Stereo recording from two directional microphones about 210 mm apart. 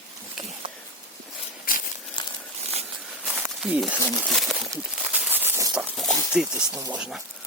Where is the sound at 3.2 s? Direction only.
5° right (ahead or behind).